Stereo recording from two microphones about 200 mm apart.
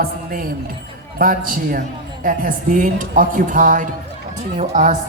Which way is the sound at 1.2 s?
45° right (ahead or behind).